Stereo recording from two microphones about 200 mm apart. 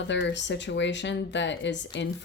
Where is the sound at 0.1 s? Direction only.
60° left (ahead or behind).